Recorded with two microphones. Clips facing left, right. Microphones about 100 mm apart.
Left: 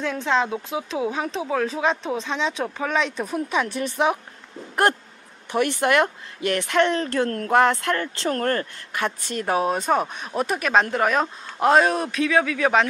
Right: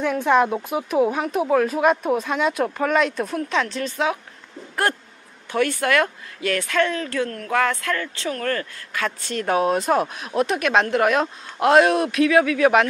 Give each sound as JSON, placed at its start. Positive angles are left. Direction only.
{"t": 0.0, "sound": "speech", "side_deg": -15}
{"t": 0.8, "sound": "speech", "side_deg": -25}
{"t": 1.1, "sound": "speech", "side_deg": -10}
{"t": 3.3, "sound": "speech", "side_deg": 15}
{"t": 5.5, "sound": "speech", "side_deg": 20}
{"t": 7.2, "sound": "speech", "side_deg": 40}
{"t": 7.5, "sound": "speech", "side_deg": 30}
{"t": 8.9, "sound": "speech", "side_deg": 20}
{"t": 9.4, "sound": "speech", "side_deg": 5}